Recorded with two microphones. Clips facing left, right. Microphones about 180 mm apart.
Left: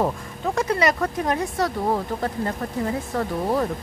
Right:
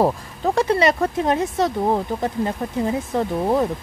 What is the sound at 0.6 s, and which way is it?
Speech, 30° right (ahead or behind).